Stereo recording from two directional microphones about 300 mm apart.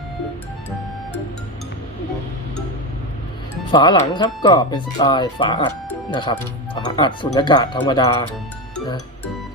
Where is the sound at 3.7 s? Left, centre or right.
Centre.